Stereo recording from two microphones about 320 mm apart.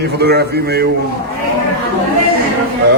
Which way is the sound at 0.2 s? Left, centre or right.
Right.